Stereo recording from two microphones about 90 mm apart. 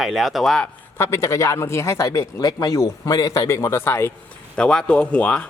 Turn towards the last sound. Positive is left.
turn(degrees=15)  # may be behind; listen again after turning